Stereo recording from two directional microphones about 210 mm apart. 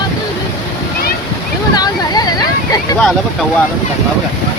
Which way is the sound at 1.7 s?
20° left (ahead or behind).